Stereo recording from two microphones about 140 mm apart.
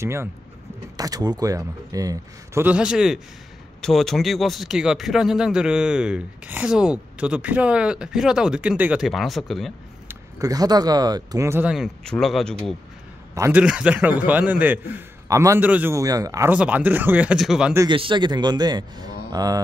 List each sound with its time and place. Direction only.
0.0 s a man's voice: 20° right (ahead or behind)
2.6 s speech: 10° right (ahead or behind)
10.0 s speech: 25° right (ahead or behind)
11.6 s speech: 5° right (ahead or behind)
13.5 s a man's voice: 10° right (ahead or behind)
15.6 s a man's voice: 10° right (ahead or behind)
16.0 s speech: 25° right (ahead or behind)
16.5 s a man's voice: 10° right (ahead or behind)
17.8 s speech: 35° right (ahead or behind)